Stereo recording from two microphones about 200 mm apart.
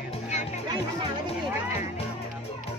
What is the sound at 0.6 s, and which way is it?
Music, 20° right (ahead or behind).